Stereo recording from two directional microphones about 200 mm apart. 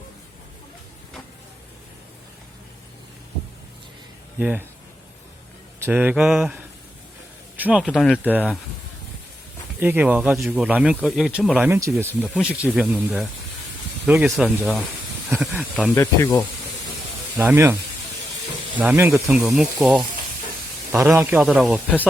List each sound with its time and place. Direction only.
4.4 s speech: 10° right (ahead or behind)
5.8 s speech: 10° right (ahead or behind)
7.9 s speech: 5° left (ahead or behind)
8.2 s speech: 10° right (ahead or behind)
9.8 s speech: 10° right (ahead or behind)
16.0 s speech: 20° left (ahead or behind)
17.3 s speech: 10° right (ahead or behind)
18.8 s speech: 10° right (ahead or behind)
20.9 s speech: 15° right (ahead or behind)